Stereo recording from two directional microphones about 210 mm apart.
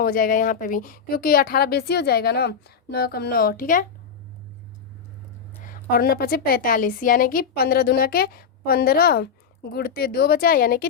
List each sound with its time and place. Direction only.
0.0 s a woman's voice: 40° left (ahead or behind)
5.6 s a woman's voice: 45° left (ahead or behind)